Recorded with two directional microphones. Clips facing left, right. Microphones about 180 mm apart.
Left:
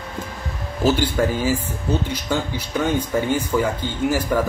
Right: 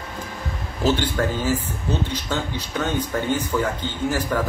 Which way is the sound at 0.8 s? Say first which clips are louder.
Left 2 dB; 10° left (ahead or behind).